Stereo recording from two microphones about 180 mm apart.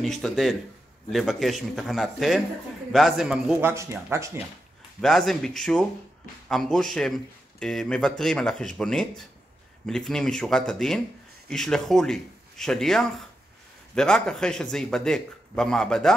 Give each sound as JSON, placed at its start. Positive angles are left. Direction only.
{"t": 0.0, "sound": "a man's voice", "side_deg": 5}
{"t": 3.7, "sound": "speech", "side_deg": -15}
{"t": 5.0, "sound": "a man's voice", "side_deg": 0}